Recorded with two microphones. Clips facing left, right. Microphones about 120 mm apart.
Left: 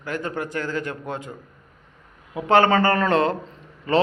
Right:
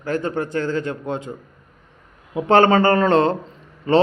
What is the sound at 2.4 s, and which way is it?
A man's voice, 25° right (ahead or behind).